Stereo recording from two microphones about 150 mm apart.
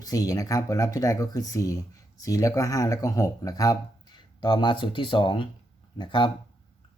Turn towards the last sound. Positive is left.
turn(degrees=30)  # may be behind; listen again after turning